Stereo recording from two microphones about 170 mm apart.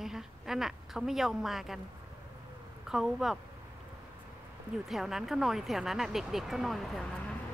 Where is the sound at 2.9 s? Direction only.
Centre (ahead or behind).